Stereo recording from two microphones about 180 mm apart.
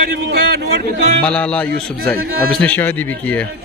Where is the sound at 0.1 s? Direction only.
60° right (ahead or behind).